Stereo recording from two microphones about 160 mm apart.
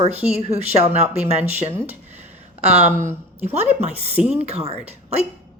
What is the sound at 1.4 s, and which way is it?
Speech, 15° right (ahead or behind).